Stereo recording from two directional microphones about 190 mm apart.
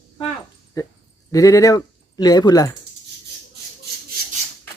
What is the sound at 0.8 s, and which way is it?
Speech, 20° left (ahead or behind).